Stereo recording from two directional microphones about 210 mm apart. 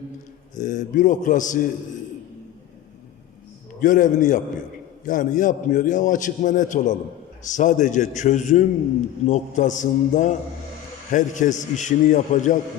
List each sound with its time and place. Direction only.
0.6 s a man's voice: 35° left (ahead or behind)
3.8 s a man's voice: 40° left (ahead or behind)